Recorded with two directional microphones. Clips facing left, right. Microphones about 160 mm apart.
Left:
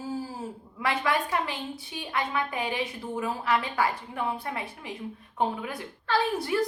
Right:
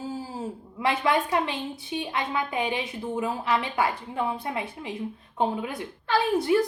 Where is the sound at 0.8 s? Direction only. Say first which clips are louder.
Right 3 dB; 20° right (ahead or behind).